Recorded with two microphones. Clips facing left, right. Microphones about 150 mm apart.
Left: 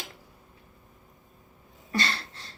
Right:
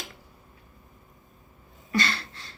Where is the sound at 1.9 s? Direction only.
35° left (ahead or behind).